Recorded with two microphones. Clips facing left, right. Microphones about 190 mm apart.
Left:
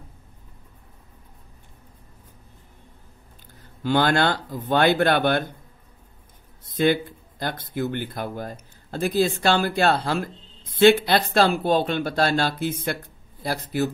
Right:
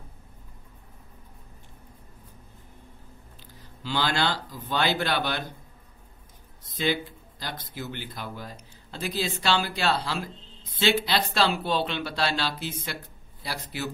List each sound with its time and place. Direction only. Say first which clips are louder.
3.6 s speech: left 8 dB; 55° left (ahead or behind)
6.6 s speech: left 7 dB; 55° left (ahead or behind)